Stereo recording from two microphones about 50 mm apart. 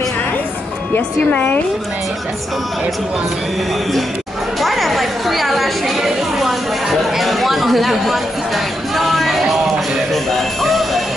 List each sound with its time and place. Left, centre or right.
0.9 s speech: left
4.6 s a sound: centre
10.1 s music: centre